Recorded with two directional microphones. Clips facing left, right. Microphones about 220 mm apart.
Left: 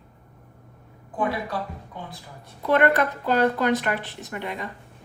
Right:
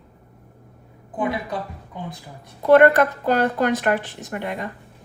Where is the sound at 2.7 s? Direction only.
45° right (ahead or behind).